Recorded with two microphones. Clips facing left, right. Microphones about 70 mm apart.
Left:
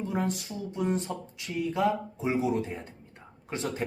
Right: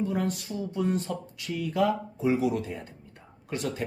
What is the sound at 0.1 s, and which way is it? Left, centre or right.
Speech, left.